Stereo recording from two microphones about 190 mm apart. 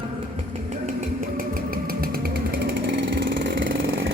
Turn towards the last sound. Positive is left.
turn(degrees=-80)